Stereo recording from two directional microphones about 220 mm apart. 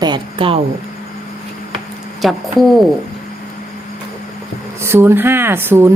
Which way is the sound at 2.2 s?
Centre (ahead or behind).